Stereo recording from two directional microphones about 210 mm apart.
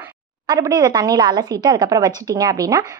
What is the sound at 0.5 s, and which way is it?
Speech, 15° right (ahead or behind).